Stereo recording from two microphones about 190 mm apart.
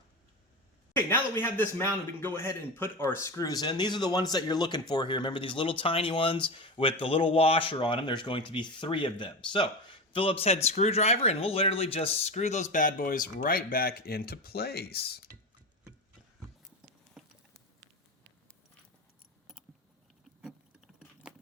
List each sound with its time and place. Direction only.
0.9 s a man's voice: 10° left (ahead or behind); by 15.3 s 55° left (ahead or behind)
17.2 s patter: centre (ahead or behind)
20.4 s vehicle: 5° right (ahead or behind)